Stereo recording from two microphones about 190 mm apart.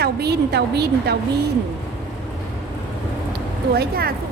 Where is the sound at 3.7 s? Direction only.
55° right (ahead or behind).